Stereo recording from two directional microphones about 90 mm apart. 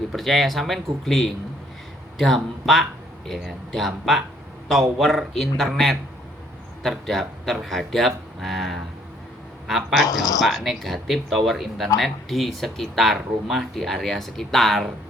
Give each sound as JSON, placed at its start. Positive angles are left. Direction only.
{"t": 0.1, "sound": "speech", "side_deg": 0}